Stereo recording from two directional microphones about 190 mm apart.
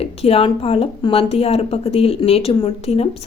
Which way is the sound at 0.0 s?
30° left (ahead or behind).